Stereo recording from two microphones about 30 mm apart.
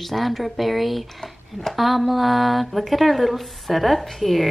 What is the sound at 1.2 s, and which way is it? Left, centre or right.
Speech, centre.